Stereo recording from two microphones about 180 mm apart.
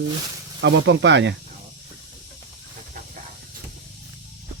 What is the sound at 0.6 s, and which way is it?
Speech, 85° right.